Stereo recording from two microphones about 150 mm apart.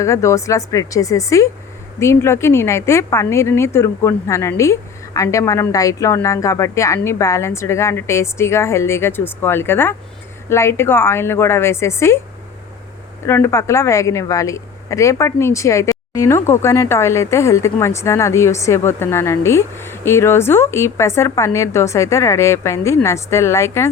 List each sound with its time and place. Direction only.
0.0 s a woman's voice: 20° left (ahead or behind)
13.2 s a woman's voice: 15° left (ahead or behind)